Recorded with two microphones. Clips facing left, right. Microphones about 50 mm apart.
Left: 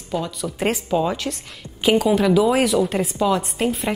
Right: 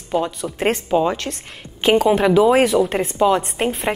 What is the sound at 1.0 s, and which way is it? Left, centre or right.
Speech, centre.